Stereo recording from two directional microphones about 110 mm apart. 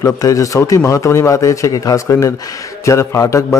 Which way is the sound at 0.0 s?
30° left (ahead or behind).